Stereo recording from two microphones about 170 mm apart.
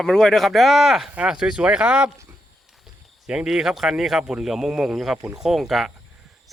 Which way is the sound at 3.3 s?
5° right (ahead or behind).